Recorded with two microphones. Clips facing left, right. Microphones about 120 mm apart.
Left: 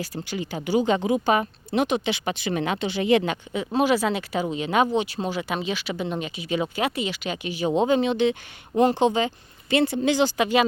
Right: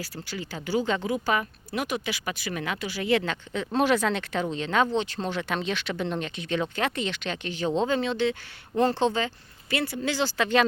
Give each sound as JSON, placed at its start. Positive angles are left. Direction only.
{"t": 0.0, "sound": "speech", "side_deg": 20}